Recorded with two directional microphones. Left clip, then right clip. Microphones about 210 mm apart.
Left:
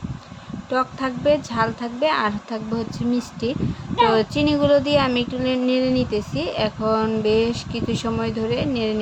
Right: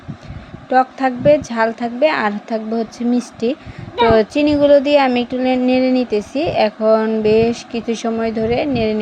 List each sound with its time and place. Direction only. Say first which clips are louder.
0.7 s a woman's voice: right 8 dB; 10° right (ahead or behind)